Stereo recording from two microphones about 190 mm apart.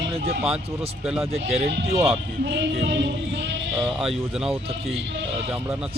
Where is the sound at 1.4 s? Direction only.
35° right (ahead or behind).